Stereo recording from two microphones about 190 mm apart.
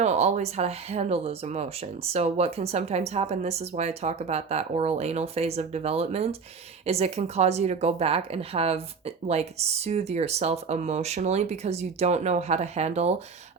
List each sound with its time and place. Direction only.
0.0 s speech: 35° right (ahead or behind)